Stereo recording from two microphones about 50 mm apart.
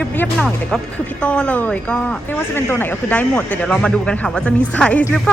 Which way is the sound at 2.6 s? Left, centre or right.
Left.